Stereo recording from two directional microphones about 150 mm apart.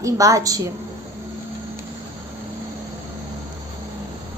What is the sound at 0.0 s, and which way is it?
Speech, 20° right (ahead or behind).